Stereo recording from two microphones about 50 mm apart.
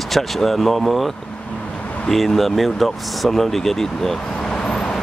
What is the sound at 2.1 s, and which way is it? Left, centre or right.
Speech, centre.